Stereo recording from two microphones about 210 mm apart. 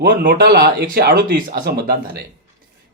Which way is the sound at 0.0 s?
50° right (ahead or behind).